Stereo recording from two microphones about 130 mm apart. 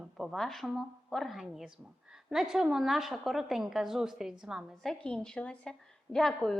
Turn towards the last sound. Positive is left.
turn(degrees=5)  # may be behind; listen again after turning